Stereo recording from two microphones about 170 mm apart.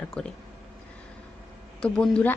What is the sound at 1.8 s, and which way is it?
Speech, 5° left (ahead or behind).